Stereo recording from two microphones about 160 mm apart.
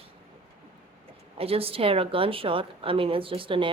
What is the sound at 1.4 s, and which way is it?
Speech, 35° right (ahead or behind).